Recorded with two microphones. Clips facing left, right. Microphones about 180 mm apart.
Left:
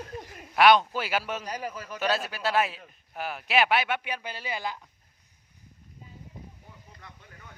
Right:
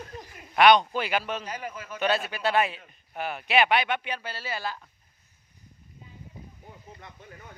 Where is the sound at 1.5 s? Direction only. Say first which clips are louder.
Left 1 dB; 35° left (ahead or behind).